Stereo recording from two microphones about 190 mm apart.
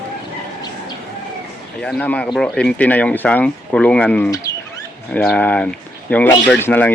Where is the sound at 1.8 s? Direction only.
5° left (ahead or behind).